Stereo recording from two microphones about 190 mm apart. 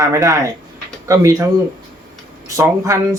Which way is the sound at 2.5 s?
15° right (ahead or behind).